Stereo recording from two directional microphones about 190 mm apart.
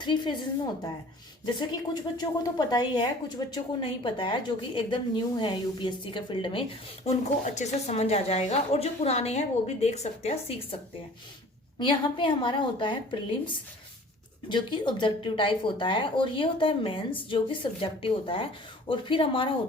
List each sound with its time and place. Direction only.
0.0 s speech: 25° left (ahead or behind)
11.8 s speech: 25° left (ahead or behind)